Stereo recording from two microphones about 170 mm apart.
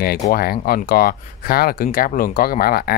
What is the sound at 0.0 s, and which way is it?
Speech, 60° left (ahead or behind).